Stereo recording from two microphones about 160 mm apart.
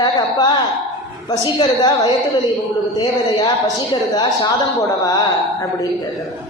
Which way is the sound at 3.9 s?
25° left (ahead or behind).